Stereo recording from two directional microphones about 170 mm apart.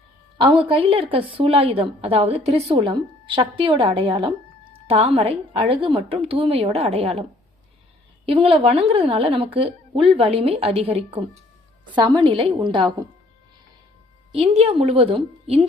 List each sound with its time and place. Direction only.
0.3 s a woman's voice: 30° right (ahead or behind)
8.3 s a woman's voice: 35° right (ahead or behind)
14.3 s a woman's voice: 35° right (ahead or behind)